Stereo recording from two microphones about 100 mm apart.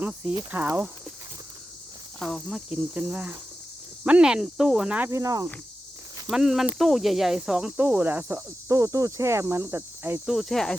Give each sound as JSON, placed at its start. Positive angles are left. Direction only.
{"t": 0.5, "sound": "speech", "side_deg": -15}
{"t": 2.1, "sound": "cricket", "side_deg": 0}
{"t": 2.6, "sound": "speech", "side_deg": -15}
{"t": 5.1, "sound": "speech", "side_deg": -35}
{"t": 6.3, "sound": "speech", "side_deg": -5}
{"t": 7.8, "sound": "cricket", "side_deg": -20}
{"t": 8.6, "sound": "cricket", "side_deg": -30}
{"t": 10.2, "sound": "speech", "side_deg": 0}